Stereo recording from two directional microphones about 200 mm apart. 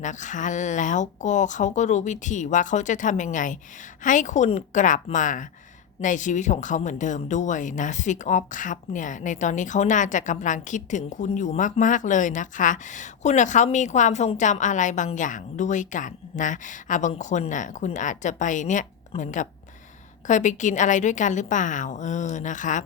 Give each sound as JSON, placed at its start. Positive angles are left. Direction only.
{"t": 0.0, "sound": "speech", "side_deg": 40}